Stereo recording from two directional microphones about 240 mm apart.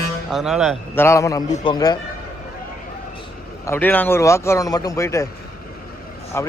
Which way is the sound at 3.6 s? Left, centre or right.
Centre.